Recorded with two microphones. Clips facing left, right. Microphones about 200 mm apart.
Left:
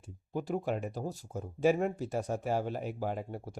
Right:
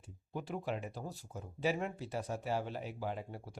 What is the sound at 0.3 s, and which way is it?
Speech, 45° left (ahead or behind).